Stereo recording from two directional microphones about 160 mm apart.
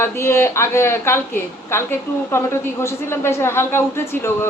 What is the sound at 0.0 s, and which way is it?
A man's voice, 15° left (ahead or behind).